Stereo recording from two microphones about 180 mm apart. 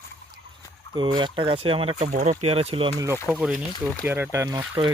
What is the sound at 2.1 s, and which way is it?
Speech, 40° right (ahead or behind).